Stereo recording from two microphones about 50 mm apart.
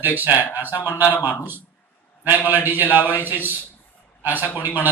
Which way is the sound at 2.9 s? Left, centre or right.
Right.